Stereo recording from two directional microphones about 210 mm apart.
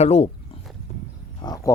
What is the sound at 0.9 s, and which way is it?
Wild animals, 35° left (ahead or behind).